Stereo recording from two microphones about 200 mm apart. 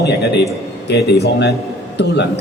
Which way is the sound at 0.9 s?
55° left (ahead or behind).